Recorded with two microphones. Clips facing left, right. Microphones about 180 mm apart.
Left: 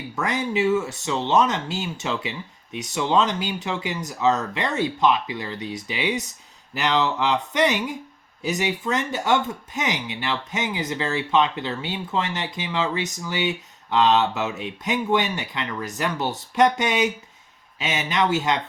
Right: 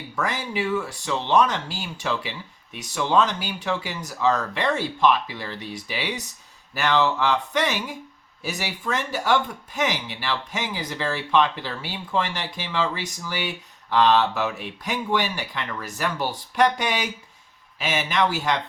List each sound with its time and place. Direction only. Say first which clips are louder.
0.2 s speech: left 3 dB; 20° left (ahead or behind)